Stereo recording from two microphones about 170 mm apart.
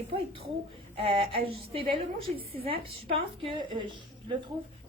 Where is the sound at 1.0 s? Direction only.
35° right (ahead or behind).